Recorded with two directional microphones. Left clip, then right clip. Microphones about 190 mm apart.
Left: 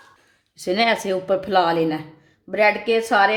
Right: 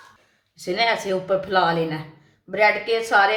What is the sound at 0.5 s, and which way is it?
A woman's voice, 50° left (ahead or behind).